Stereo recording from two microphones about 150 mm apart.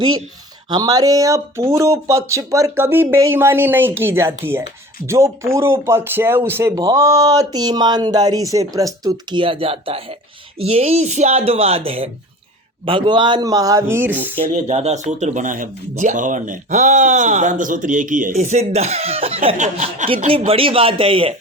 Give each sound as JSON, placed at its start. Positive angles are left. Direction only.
{"t": 0.7, "sound": "speech", "side_deg": -25}
{"t": 14.5, "sound": "speech", "side_deg": -50}
{"t": 20.2, "sound": "speech", "side_deg": -40}